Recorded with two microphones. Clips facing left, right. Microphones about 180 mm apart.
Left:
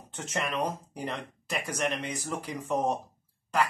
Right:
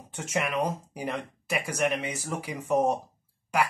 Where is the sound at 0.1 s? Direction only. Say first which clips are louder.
Right 3 dB; 10° right (ahead or behind).